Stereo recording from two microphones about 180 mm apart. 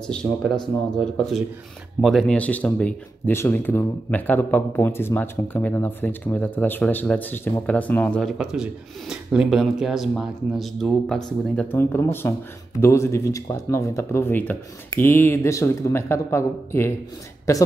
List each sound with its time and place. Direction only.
0.0 s speech: 5° left (ahead or behind)